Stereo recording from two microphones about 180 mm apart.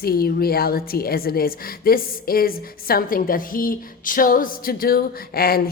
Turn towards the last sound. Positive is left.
turn(degrees=60)  # may be behind; listen again after turning